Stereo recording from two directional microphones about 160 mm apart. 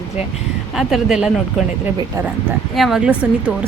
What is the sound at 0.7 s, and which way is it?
Speech, centre (ahead or behind).